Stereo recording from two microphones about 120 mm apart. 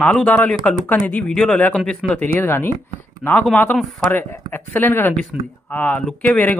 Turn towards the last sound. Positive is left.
turn(degrees=10)  # may be behind; listen again after turning